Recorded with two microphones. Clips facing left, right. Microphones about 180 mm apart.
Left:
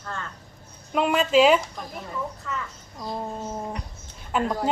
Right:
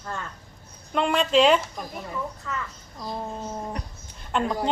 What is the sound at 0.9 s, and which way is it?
Speech, 5° left (ahead or behind).